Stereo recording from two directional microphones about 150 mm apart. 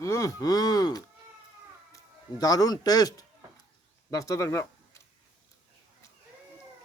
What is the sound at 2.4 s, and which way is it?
Gasp, 25° left (ahead or behind).